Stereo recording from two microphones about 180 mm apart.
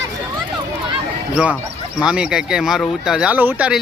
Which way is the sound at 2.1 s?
5° right (ahead or behind).